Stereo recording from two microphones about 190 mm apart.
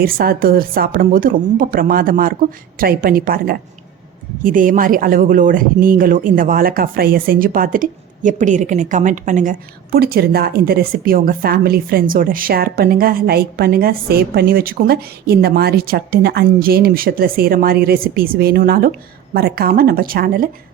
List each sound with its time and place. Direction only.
0.0 s speech: 50° right (ahead or behind)